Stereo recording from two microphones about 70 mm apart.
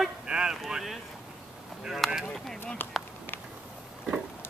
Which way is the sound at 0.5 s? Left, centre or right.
Centre.